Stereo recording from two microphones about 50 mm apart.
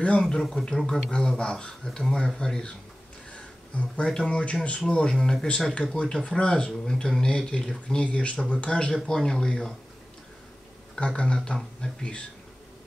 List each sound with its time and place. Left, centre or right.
0.0 s speech: centre
0.4 s speech: centre
1.1 s speech: centre
3.3 s speech: left
6.8 s speech: centre
11.0 s speech: left